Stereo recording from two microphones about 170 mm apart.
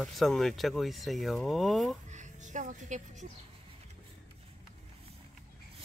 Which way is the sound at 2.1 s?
45° right (ahead or behind).